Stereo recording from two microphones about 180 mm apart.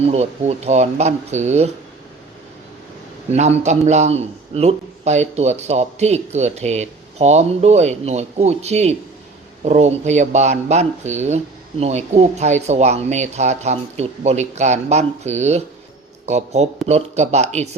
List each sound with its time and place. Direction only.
0.0 s a man's voice: 35° right (ahead or behind)
3.3 s a man's voice: 40° right (ahead or behind)